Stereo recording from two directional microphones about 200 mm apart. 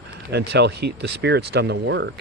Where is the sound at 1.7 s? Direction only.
65° right (ahead or behind).